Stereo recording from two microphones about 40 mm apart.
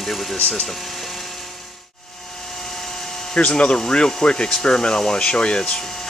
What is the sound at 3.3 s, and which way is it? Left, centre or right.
Speech, left.